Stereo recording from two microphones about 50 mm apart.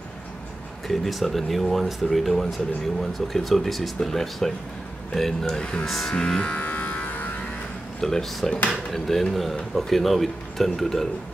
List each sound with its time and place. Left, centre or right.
0.8 s speech: centre
5.9 s speech: centre
6.1 s speech: centre
6.6 s electric shaver: left
8.0 s speech: centre